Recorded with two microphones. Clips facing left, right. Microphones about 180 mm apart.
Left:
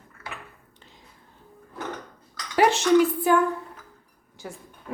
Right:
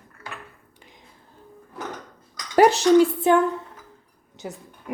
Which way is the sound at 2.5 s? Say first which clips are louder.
Right 4 dB; 40° right (ahead or behind).